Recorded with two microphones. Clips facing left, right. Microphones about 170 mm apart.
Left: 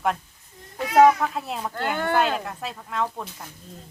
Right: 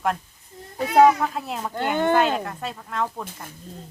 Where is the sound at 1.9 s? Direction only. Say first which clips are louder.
Right 5 dB; 20° right (ahead or behind).